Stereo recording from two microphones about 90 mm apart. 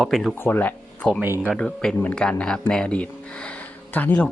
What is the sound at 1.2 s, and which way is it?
Speech, 25° right (ahead or behind).